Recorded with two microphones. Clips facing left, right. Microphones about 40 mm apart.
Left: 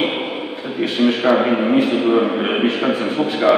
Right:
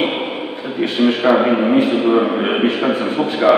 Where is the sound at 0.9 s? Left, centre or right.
Centre.